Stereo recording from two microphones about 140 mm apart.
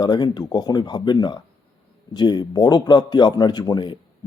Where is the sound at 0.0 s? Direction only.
30° left (ahead or behind).